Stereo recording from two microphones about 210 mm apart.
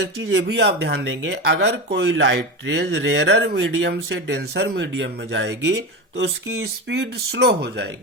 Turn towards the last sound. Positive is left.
turn(degrees=-50)  # may be behind; listen again after turning